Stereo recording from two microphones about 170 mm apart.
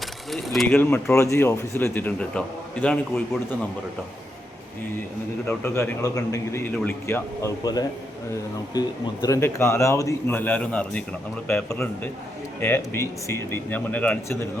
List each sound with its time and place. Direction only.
0.3 s speech: centre (ahead or behind)
0.7 s a man's voice: 10° left (ahead or behind)
5.5 s a man's voice: 15° left (ahead or behind)